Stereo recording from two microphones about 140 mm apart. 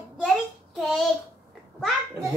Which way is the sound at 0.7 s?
Centre (ahead or behind).